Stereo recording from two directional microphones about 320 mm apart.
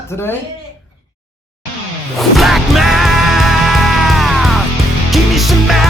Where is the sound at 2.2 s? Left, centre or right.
Centre.